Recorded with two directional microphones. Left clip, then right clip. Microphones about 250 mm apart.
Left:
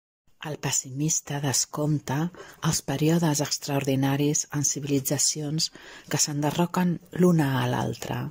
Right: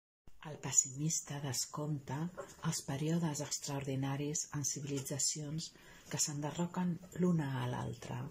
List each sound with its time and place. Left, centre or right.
0.4 s speech: left